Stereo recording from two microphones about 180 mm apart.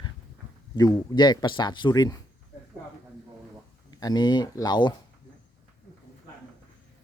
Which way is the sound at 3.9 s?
20° left (ahead or behind).